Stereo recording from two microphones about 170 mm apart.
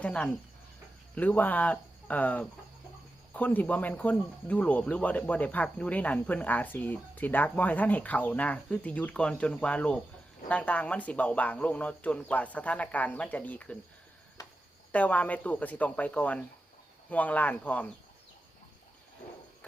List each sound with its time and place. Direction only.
0.0 s speech: 5° left (ahead or behind)
14.4 s a sound: 20° left (ahead or behind)
14.9 s speech: 10° left (ahead or behind)